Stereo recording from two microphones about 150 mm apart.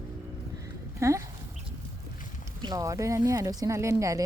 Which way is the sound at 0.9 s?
20° right (ahead or behind).